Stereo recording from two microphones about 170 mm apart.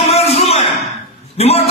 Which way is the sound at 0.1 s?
40° left (ahead or behind).